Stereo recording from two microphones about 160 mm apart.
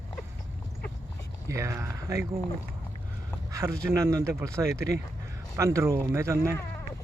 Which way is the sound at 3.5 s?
20° right (ahead or behind).